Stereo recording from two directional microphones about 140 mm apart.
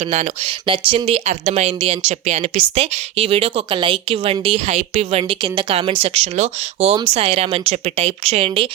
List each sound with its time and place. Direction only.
0.7 s a woman's voice: 40° right (ahead or behind)